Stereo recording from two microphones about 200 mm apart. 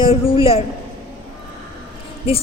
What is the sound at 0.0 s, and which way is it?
Speech, 25° left (ahead or behind).